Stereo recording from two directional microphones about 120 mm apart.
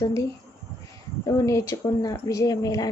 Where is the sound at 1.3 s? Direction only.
25° left (ahead or behind).